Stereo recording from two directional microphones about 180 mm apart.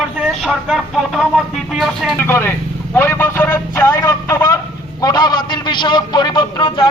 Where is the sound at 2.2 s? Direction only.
15° left (ahead or behind).